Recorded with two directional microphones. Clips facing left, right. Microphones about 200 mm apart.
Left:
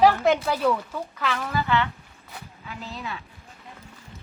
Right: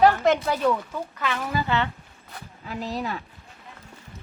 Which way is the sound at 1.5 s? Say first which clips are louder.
Left 1 dB; 15° right (ahead or behind).